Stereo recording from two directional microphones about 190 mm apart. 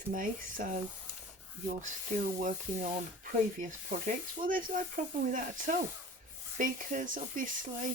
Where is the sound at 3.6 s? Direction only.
45° right (ahead or behind).